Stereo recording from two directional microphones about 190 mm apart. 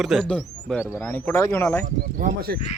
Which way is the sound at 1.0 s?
10° left (ahead or behind).